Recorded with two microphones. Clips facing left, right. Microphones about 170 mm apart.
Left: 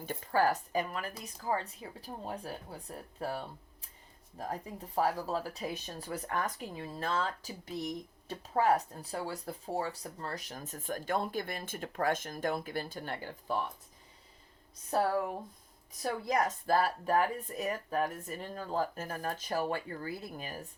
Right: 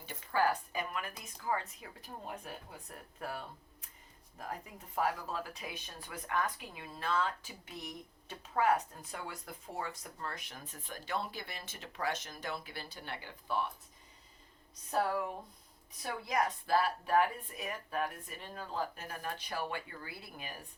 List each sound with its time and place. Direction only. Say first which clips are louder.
0.0 s speech: left 3 dB; 45° left (ahead or behind)
16.0 s speech: left 3 dB; 45° left (ahead or behind)